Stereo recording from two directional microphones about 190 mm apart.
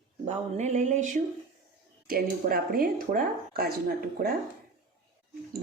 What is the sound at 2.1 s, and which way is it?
A woman's voice, 50° right (ahead or behind).